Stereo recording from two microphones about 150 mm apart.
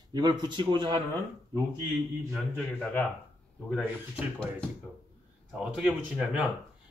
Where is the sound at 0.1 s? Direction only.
30° right (ahead or behind).